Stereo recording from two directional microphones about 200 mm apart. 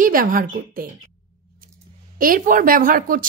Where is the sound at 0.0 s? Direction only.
45° right (ahead or behind).